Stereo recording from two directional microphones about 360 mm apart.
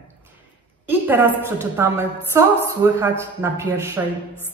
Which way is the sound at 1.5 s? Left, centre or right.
Centre.